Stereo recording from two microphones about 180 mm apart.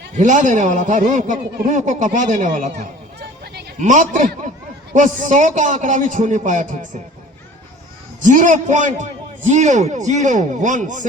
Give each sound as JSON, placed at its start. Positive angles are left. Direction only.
{"t": 0.2, "sound": "a man's voice", "side_deg": -45}
{"t": 3.8, "sound": "a man's voice", "side_deg": -45}
{"t": 8.2, "sound": "a man's voice", "side_deg": -45}